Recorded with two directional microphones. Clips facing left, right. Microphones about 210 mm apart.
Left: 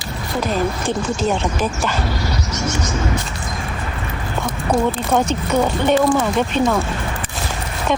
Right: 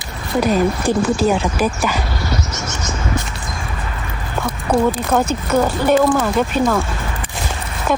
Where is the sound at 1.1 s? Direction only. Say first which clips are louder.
Right 3 dB; 10° right (ahead or behind).